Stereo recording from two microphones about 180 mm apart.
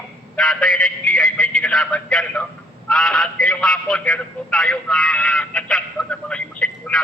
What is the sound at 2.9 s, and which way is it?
A man's voice, centre (ahead or behind).